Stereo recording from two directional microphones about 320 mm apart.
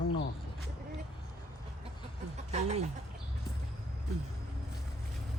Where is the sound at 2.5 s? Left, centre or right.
Centre.